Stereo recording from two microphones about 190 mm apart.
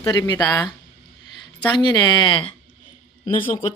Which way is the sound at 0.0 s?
20° left (ahead or behind).